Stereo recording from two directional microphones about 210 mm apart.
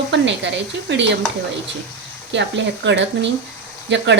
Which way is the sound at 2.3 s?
55° right (ahead or behind).